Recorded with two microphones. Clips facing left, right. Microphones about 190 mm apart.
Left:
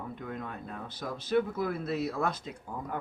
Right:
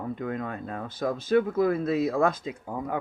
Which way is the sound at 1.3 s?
90° right.